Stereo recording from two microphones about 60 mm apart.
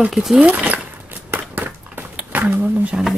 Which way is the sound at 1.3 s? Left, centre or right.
Right.